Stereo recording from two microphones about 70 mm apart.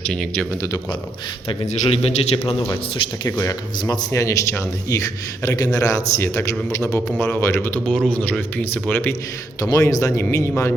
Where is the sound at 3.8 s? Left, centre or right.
Left.